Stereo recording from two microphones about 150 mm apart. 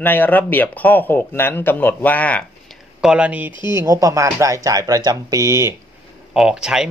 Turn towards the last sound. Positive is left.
turn(degrees=-5)  # may be behind; listen again after turning